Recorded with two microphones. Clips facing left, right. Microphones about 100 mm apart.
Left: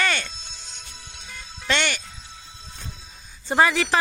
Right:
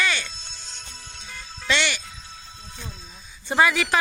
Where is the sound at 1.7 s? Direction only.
45° left (ahead or behind).